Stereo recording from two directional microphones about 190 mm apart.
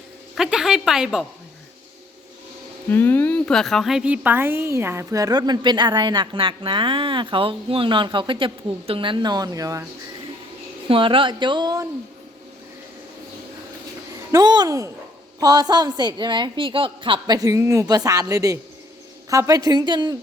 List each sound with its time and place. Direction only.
0.3 s a woman's voice: 5° right (ahead or behind)
2.9 s speech: 10° left (ahead or behind); by 9.8 s 20° right (ahead or behind)
10.8 s speech: 25° right (ahead or behind)
14.3 s speech: 20° right (ahead or behind)